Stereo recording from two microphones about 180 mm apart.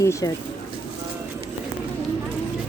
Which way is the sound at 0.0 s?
15° left (ahead or behind).